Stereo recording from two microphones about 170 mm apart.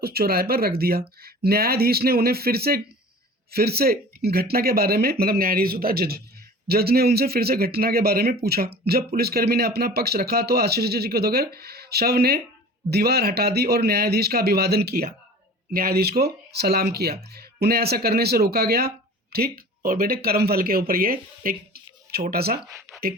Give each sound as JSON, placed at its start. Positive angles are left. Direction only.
{"t": 0.0, "sound": "speech", "side_deg": -65}